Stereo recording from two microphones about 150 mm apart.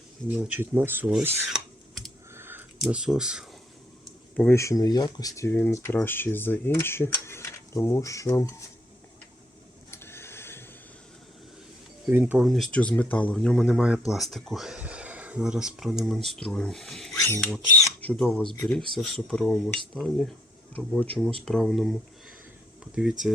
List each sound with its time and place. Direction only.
0.3 s speech: 10° right (ahead or behind)
1.5 s computer keyboard: centre (ahead or behind)
2.3 s a sound: 15° right (ahead or behind)
2.8 s speech: 5° right (ahead or behind)
4.4 s speech: 15° left (ahead or behind)
5.5 s speech: 15° left (ahead or behind)
9.9 s a sound: 15° left (ahead or behind)
12.0 s speech: 10° right (ahead or behind)
17.2 s speech: 20° left (ahead or behind)
17.8 s a sound: 5° left (ahead or behind)
18.7 s speech: 5° left (ahead or behind)
23.0 s speech: 5° right (ahead or behind)